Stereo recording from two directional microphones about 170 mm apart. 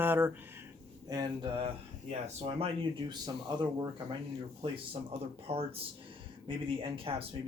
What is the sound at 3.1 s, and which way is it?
Speech, 25° right (ahead or behind).